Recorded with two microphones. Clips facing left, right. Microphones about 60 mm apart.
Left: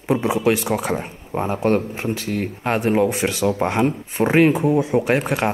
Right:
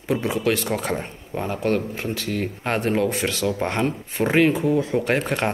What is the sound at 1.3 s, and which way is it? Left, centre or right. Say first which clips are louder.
Speech: left 4 dB; left.